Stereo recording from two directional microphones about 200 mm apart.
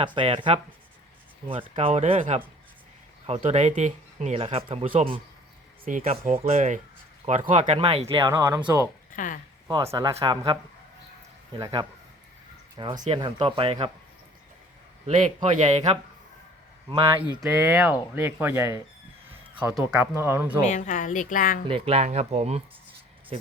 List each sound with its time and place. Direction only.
0.0 s speech: 25° right (ahead or behind)
4.9 s speech: 45° right (ahead or behind)
6.0 s speech: 30° right (ahead or behind)
7.6 s speech: 25° right (ahead or behind)
8.2 s speech: 20° right (ahead or behind)
9.1 s speech: 40° left (ahead or behind)
9.6 s speech: 15° right (ahead or behind)
11.6 s speech: 20° right (ahead or behind)
15.5 s speech: 35° right (ahead or behind)
16.9 s speech: 25° right (ahead or behind)
20.7 s speech: 40° left (ahead or behind)
21.7 s speech: 30° right (ahead or behind)